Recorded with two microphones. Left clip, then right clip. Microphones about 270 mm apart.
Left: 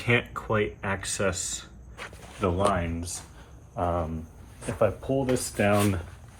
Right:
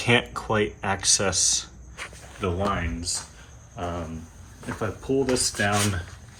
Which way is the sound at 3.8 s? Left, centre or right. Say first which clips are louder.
Left 4 dB; centre.